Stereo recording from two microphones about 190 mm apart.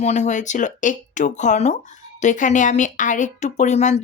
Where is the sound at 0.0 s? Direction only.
35° left (ahead or behind).